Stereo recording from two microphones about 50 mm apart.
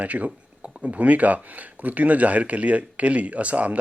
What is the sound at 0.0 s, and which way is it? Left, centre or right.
Speech, right.